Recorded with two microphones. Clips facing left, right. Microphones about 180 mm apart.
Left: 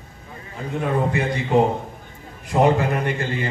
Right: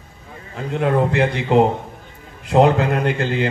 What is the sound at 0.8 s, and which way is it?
Speech, 70° right (ahead or behind).